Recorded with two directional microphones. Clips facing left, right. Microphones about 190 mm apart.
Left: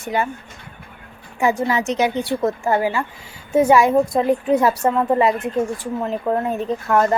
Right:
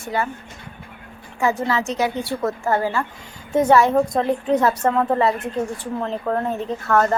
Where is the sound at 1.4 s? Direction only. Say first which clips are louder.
Left 2 dB; 15° left (ahead or behind).